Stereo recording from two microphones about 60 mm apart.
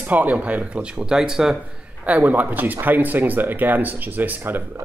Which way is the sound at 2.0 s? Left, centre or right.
Right.